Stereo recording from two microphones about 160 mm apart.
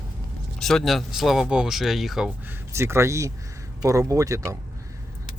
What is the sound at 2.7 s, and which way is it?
Speech, 15° right (ahead or behind).